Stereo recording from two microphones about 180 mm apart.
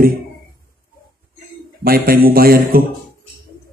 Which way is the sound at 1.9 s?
55° right (ahead or behind).